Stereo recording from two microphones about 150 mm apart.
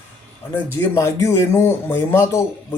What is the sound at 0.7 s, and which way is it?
Speech, 20° left (ahead or behind).